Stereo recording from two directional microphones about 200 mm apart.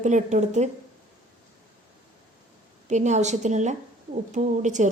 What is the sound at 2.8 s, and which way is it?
A woman's voice, 35° right (ahead or behind).